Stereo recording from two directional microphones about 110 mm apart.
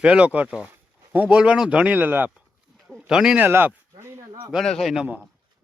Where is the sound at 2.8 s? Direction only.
Centre (ahead or behind).